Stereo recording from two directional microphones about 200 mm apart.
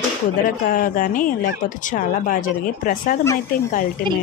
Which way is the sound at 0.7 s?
45° left (ahead or behind).